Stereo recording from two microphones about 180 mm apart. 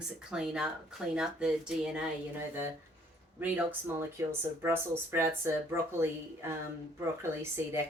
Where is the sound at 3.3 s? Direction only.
10° right (ahead or behind).